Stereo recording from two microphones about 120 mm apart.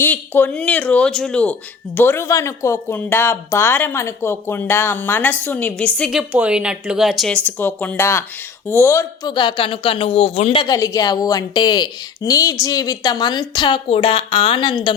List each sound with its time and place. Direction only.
0.0 s speech: 15° left (ahead or behind)
2.0 s speech: 20° left (ahead or behind)
6.1 s a woman's voice: 10° right (ahead or behind)
7.4 s speech: 15° left (ahead or behind)
9.2 s a woman's voice: 40° left (ahead or behind)
10.7 s a woman's voice: 30° left (ahead or behind)